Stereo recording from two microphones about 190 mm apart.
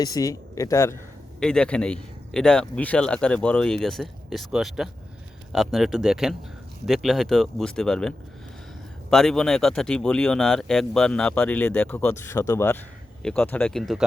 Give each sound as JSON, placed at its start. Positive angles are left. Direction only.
{"t": 0.0, "sound": "speech", "side_deg": 20}
{"t": 1.4, "sound": "speech", "side_deg": 5}